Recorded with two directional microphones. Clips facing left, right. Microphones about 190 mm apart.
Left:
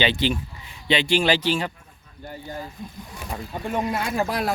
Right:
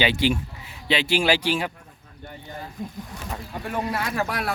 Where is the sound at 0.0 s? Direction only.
10° right (ahead or behind).